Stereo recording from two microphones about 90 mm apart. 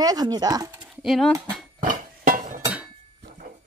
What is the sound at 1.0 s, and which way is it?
Speech, centre (ahead or behind).